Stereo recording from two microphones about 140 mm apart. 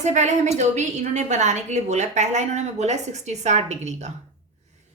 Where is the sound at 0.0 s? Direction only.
55° right (ahead or behind).